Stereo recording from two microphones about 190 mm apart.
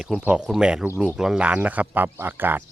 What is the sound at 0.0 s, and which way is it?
Speech, 5° right (ahead or behind).